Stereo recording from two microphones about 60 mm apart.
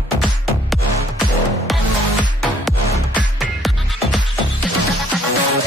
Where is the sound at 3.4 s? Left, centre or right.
Centre.